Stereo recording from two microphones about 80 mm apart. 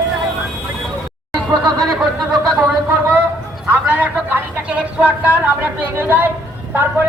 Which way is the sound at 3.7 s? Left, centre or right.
Right.